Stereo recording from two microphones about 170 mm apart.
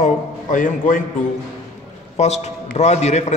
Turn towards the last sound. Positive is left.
turn(degrees=40)  # may be behind; listen again after turning